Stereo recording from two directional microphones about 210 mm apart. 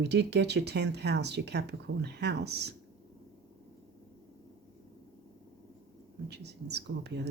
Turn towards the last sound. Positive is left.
turn(degrees=-55)  # may be behind; listen again after turning